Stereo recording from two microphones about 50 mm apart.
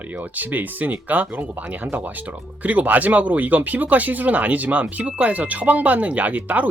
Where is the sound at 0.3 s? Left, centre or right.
Right.